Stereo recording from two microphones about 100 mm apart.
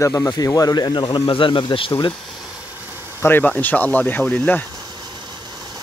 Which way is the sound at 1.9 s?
45° left (ahead or behind).